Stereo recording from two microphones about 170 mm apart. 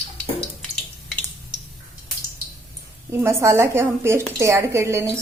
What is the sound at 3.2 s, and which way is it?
Speech, 15° right (ahead or behind).